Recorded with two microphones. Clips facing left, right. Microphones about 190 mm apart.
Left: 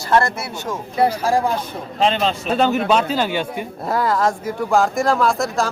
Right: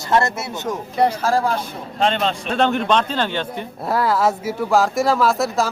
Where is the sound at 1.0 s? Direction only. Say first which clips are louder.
Left 1 dB; 10° left (ahead or behind).